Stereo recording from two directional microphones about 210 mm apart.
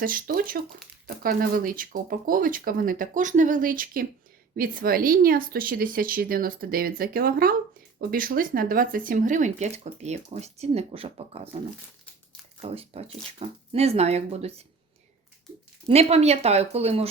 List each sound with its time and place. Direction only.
0.0 s speech: 40° right (ahead or behind)
12.6 s speech: 30° right (ahead or behind)
15.9 s speech: 30° right (ahead or behind)